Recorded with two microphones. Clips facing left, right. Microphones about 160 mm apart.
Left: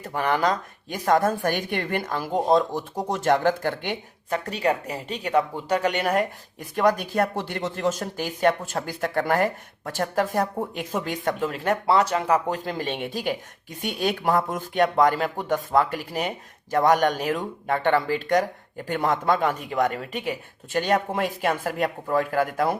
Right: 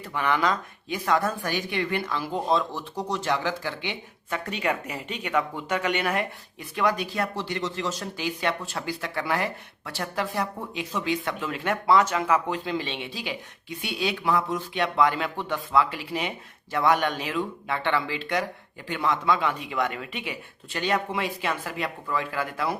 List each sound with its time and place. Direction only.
0.0 s speech: 40° left (ahead or behind)